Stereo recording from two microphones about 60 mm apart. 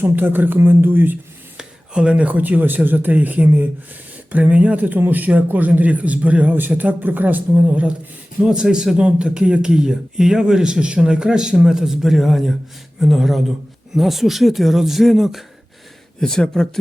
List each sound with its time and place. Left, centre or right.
0.0 s speech: right
1.5 s speech: centre
8.4 s speech: centre
16.2 s speech: centre